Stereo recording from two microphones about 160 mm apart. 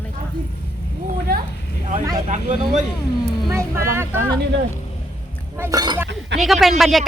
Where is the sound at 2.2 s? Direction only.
50° right (ahead or behind).